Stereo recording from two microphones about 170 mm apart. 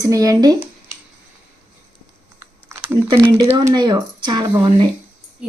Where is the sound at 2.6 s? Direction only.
15° right (ahead or behind).